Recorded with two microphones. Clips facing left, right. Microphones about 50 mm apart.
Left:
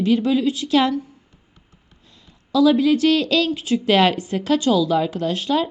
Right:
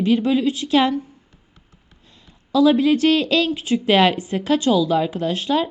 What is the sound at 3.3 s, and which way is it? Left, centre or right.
A woman's voice, centre.